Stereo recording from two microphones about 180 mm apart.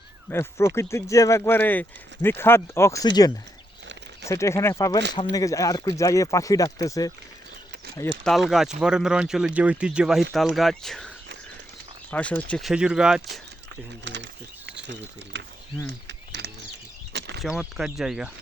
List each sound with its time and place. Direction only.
0.3 s speech: 15° left (ahead or behind)
8.2 s speech: centre (ahead or behind)
12.1 s speech: 10° left (ahead or behind)
14.0 s a sound: 80° right
14.8 s speech: 75° right (ahead or behind)
15.9 s a sound: 70° right (ahead or behind)
17.4 s speech: 5° right (ahead or behind)